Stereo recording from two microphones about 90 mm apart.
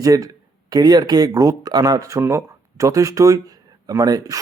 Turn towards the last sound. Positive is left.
turn(degrees=-40)  # may be behind; listen again after turning